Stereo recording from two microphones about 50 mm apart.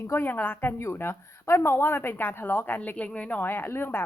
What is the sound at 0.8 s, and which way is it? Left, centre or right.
Speech, left.